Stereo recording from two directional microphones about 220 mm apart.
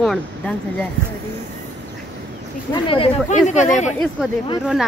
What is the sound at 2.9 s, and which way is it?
Speech, 30° left (ahead or behind).